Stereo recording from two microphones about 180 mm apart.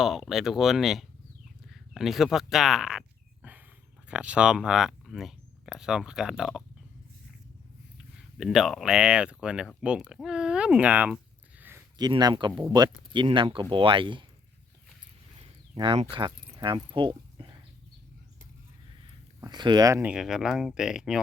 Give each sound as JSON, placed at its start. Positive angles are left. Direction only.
{"t": 0.0, "sound": "speech", "side_deg": 0}
{"t": 4.1, "sound": "speech", "side_deg": -5}
{"t": 7.9, "sound": "speech", "side_deg": 0}
{"t": 11.9, "sound": "speech", "side_deg": -20}
{"t": 15.4, "sound": "a sound", "side_deg": -30}
{"t": 19.4, "sound": "speech", "side_deg": -25}